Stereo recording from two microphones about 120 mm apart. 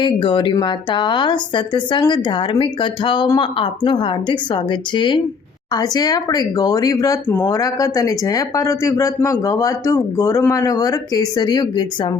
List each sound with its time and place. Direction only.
0.0 s a woman's voice: 45° left (ahead or behind)